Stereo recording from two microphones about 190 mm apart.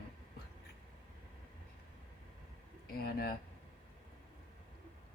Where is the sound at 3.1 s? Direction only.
50° left (ahead or behind).